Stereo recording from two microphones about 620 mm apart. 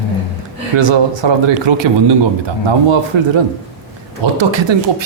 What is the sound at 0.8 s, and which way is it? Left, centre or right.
Speech, right.